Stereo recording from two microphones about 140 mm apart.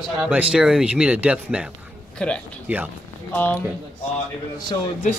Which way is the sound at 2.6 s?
10° right (ahead or behind).